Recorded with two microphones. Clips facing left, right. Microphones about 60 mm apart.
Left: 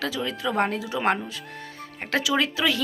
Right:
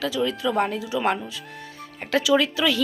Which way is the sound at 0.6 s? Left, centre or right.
Left.